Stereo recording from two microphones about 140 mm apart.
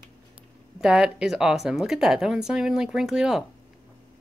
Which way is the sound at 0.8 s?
5° right (ahead or behind).